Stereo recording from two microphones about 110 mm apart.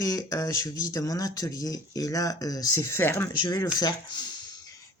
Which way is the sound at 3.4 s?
35° left (ahead or behind).